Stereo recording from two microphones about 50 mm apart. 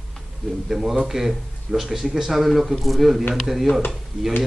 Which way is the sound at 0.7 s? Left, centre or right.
Centre.